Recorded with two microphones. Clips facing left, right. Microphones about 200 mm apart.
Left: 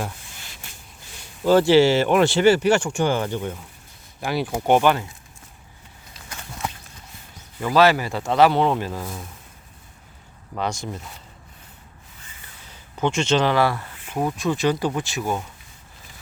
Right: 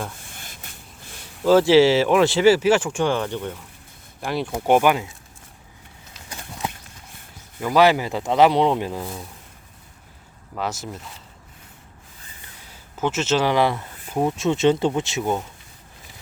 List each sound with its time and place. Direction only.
0.3 s a sound: 50° right (ahead or behind)
1.5 s speech: centre (ahead or behind)
7.6 s speech: 15° right (ahead or behind)
10.5 s speech: 5° right (ahead or behind)
13.0 s speech: 5° right (ahead or behind); by 15.4 s 20° right (ahead or behind)